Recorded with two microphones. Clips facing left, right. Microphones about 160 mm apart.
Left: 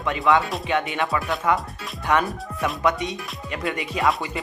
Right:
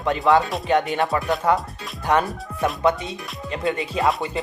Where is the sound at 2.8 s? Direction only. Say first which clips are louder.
Even; 30° right (ahead or behind).